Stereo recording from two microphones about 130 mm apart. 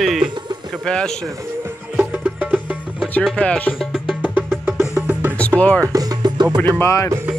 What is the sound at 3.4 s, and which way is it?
Music, 10° left (ahead or behind).